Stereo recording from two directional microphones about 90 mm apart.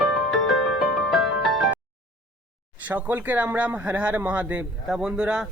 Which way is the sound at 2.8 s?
20° right (ahead or behind).